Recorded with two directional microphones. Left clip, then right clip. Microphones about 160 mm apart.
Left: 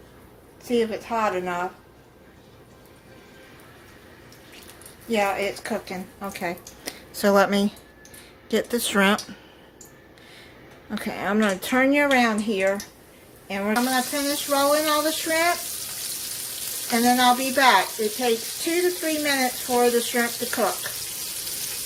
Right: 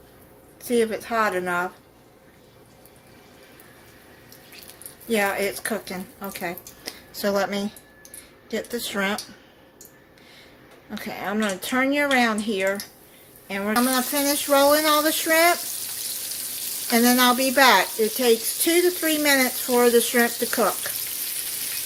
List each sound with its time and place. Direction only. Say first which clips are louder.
0.7 s a woman's voice: right 1 dB; 35° right (ahead or behind)
5.1 s a woman's voice: even; 35° right (ahead or behind)
6.2 s speech: left 2 dB; 5° right (ahead or behind)
6.8 s speech: left 4 dB; 20° left (ahead or behind)
10.9 s speech: left 3 dB; 20° left (ahead or behind); by 13.7 s 10° right (ahead or behind)
13.9 s a sound: right 1 dB; 55° right (ahead or behind)
17.0 s speech: even; 50° right (ahead or behind)
19.2 s a sound: right 4 dB; 60° right (ahead or behind)